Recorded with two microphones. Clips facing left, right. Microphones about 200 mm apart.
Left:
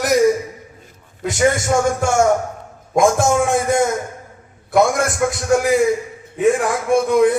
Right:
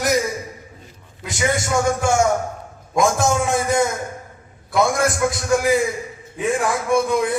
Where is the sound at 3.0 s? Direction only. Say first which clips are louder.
Left 3 dB; 50° left (ahead or behind).